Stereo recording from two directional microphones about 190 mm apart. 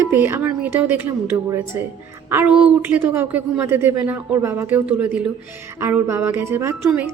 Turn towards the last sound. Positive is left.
turn(degrees=-10)  # may be behind; listen again after turning